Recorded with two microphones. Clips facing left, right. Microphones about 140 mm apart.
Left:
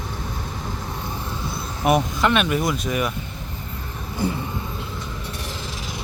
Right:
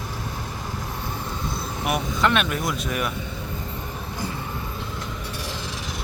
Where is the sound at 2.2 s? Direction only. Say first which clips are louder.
Right 1 dB; centre (ahead or behind).